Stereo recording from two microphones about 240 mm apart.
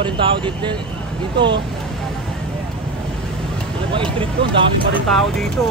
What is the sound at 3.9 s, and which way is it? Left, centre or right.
Speech, right.